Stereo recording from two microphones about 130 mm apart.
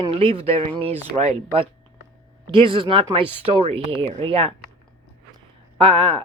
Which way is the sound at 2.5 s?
40° right (ahead or behind).